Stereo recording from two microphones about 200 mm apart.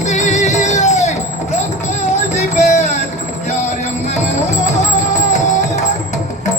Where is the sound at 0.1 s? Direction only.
35° left (ahead or behind).